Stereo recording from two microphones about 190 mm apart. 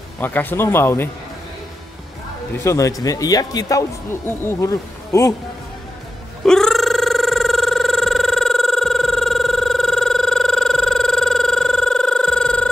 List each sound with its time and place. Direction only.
0.2 s speech: 10° left (ahead or behind)
2.6 s speech: 15° left (ahead or behind)
6.4 s telephone: 5° left (ahead or behind)